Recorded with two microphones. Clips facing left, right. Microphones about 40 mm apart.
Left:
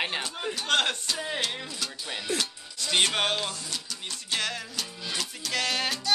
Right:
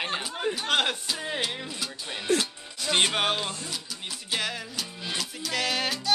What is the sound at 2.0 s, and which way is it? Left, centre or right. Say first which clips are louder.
Speech: right 5 dB; centre.